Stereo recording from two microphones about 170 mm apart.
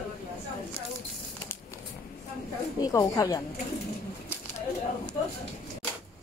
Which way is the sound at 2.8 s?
20° left (ahead or behind).